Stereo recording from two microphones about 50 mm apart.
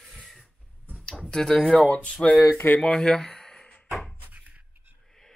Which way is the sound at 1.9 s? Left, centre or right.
Left.